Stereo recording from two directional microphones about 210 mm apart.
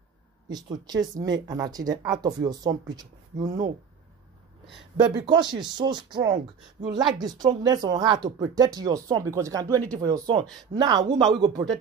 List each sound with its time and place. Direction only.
0.5 s speech: 20° right (ahead or behind)
5.1 s speech: 20° right (ahead or behind)
10.4 s speech: 5° left (ahead or behind)
10.7 s speech: 20° right (ahead or behind)